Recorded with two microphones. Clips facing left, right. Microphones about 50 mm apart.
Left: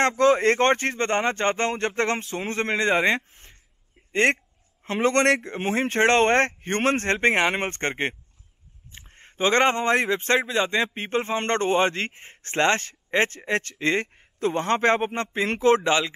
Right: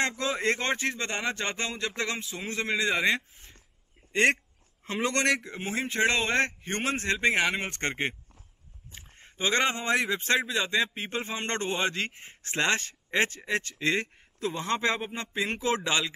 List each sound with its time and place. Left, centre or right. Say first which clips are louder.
0.0 s speech: left 9 dB; left
4.8 s speech: left 6 dB; left
8.9 s speech: left 6 dB; left
13.7 s speech: left 3 dB; left
14.4 s speech: left 7 dB; left